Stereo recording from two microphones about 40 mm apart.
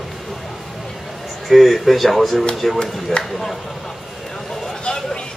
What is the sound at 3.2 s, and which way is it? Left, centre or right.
Speech, left.